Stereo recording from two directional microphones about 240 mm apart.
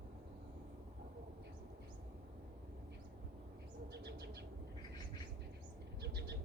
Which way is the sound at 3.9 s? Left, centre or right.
Right.